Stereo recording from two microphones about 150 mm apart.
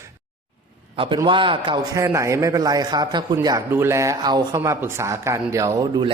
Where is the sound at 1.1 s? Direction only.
35° right (ahead or behind).